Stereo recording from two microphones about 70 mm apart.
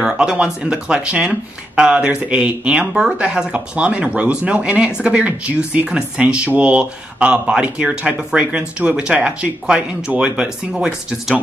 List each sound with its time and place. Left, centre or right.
0.0 s speech: centre